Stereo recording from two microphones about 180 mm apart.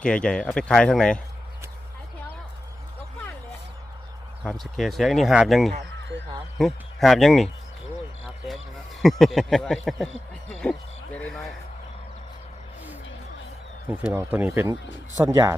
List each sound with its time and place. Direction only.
0.0 s speech: 5° left (ahead or behind)
4.6 s speech: centre (ahead or behind)
10.6 s sheep: 5° left (ahead or behind)
14.0 s speech: 10° right (ahead or behind)